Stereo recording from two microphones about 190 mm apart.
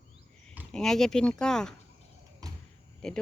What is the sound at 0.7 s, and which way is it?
Speech, centre (ahead or behind).